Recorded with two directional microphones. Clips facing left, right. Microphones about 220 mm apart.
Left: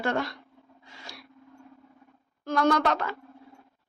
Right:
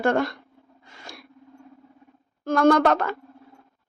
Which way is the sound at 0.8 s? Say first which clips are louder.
Right 3 dB; 50° right (ahead or behind).